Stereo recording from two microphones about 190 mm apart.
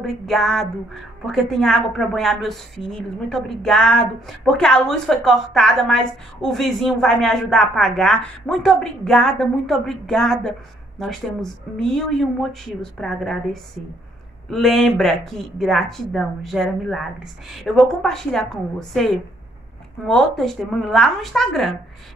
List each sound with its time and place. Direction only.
0.0 s a woman's voice: centre (ahead or behind)
11.7 s a woman's voice: centre (ahead or behind)